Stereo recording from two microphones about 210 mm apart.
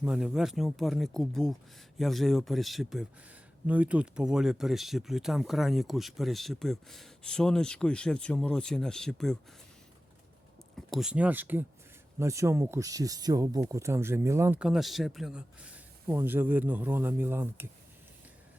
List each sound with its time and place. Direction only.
0.0 s speech: 5° right (ahead or behind)
10.8 s speech: centre (ahead or behind)